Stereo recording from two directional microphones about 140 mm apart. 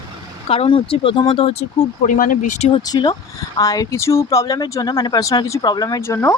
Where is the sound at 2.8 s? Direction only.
30° left (ahead or behind).